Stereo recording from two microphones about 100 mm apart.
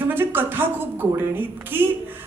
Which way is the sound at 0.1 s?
20° right (ahead or behind).